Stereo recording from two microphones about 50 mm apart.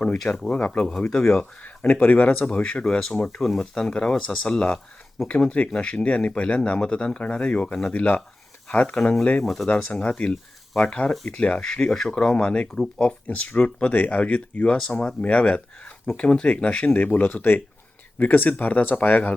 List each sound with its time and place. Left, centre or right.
0.5 s speech: left
1.6 s speech: left
2.5 s speech: left
2.8 s speech: centre
9.4 s speech: centre
9.6 s speech: left
13.2 s speech: left
16.9 s speech: left